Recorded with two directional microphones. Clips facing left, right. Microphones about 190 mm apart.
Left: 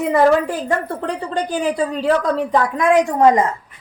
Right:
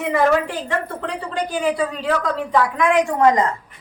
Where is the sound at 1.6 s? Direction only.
40° left (ahead or behind).